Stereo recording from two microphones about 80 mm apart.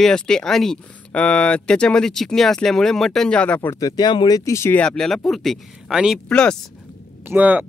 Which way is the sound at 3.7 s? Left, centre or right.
Left.